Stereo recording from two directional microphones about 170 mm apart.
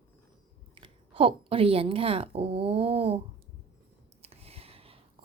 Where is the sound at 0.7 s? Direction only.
30° right (ahead or behind).